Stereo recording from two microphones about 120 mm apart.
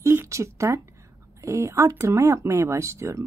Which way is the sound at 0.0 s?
20° right (ahead or behind).